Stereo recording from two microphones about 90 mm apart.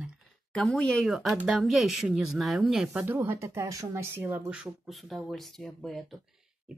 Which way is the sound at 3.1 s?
25° right (ahead or behind).